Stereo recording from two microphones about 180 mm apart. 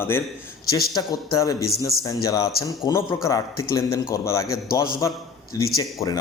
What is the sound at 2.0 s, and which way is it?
Speech, 20° left (ahead or behind).